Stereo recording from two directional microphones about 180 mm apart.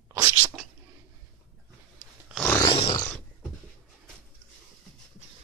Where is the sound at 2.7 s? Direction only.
30° left (ahead or behind).